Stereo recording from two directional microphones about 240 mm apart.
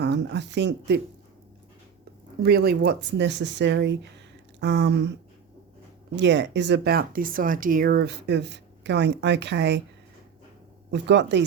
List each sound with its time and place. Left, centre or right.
0.0 s speech: right
2.4 s speech: right
6.1 s speech: right
10.9 s speech: right